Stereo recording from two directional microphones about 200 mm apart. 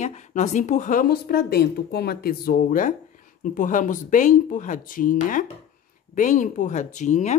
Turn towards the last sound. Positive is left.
turn(degrees=35)  # may be behind; listen again after turning